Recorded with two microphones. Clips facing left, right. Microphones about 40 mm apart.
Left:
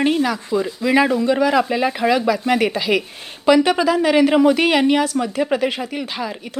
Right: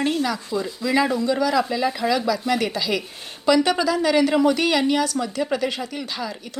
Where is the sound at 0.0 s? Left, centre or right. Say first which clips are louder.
Left 5 dB; left.